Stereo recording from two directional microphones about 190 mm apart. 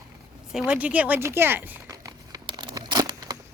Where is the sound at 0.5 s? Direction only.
5° right (ahead or behind).